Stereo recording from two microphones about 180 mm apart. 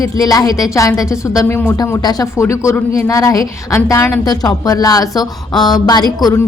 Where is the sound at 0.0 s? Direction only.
20° left (ahead or behind).